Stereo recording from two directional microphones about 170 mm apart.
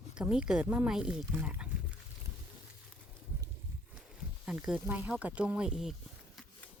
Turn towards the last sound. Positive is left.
turn(degrees=0)  # may be behind; listen again after turning